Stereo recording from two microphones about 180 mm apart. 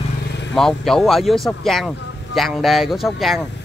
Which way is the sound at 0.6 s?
Centre (ahead or behind).